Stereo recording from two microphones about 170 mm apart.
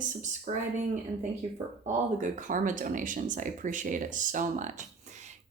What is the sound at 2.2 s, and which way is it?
Speech, 50° right (ahead or behind).